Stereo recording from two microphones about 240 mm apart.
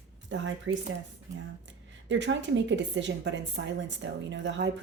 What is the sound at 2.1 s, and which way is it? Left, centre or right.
A woman's voice, right.